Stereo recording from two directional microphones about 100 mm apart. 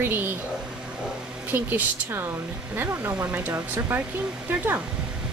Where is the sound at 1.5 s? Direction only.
20° right (ahead or behind).